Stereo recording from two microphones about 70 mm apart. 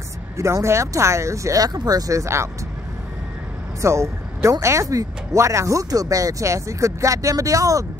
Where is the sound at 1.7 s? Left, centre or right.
Right.